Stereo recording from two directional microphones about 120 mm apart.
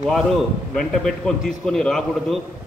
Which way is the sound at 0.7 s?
5° left (ahead or behind).